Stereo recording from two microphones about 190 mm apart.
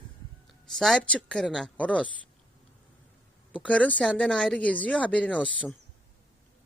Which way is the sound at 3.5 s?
5° left (ahead or behind).